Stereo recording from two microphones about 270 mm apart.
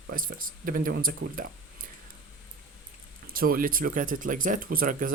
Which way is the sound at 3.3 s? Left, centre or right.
Right.